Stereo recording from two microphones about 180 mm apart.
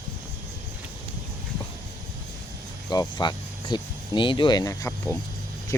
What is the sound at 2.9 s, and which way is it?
Speech, 20° left (ahead or behind).